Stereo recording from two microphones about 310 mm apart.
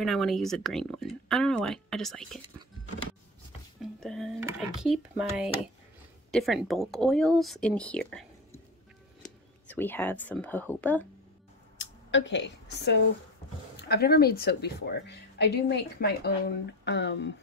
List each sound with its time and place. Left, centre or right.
0.0 s speech: centre
3.8 s a sound: centre
6.3 s speech: centre
11.8 s a woman's voice: left